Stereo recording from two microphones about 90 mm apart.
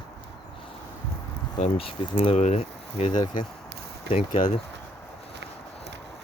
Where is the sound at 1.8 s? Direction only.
90° left.